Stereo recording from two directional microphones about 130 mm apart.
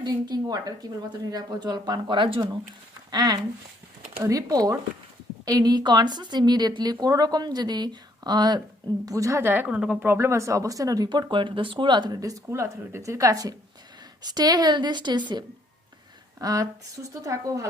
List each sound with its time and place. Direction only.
0.0 s a woman's voice: 35° right (ahead or behind)